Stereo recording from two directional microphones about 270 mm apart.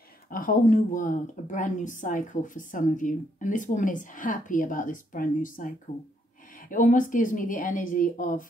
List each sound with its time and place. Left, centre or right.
0.3 s a woman's voice: left